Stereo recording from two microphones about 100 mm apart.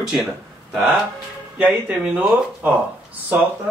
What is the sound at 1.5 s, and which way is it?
Speech, 15° right (ahead or behind).